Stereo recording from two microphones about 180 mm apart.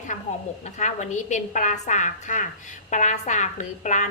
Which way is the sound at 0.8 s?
40° left (ahead or behind).